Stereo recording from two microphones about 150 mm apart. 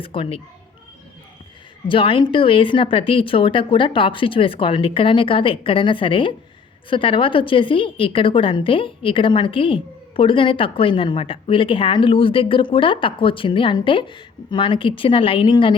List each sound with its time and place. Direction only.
0.0 s a woman's voice: 35° left (ahead or behind)
1.9 s a woman's voice: 35° left (ahead or behind)